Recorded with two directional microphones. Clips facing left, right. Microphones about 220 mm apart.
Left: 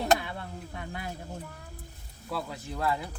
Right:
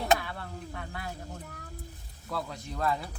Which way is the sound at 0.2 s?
20° left (ahead or behind).